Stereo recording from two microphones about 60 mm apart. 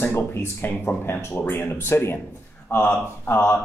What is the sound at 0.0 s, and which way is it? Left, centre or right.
Speech, left.